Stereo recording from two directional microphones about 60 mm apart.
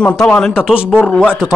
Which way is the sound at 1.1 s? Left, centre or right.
Centre.